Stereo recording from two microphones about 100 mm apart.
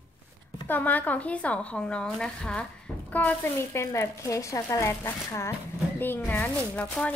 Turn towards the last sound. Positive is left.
turn(degrees=15)  # may be behind; listen again after turning